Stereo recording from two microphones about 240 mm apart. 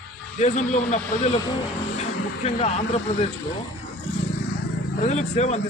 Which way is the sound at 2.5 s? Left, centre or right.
Left.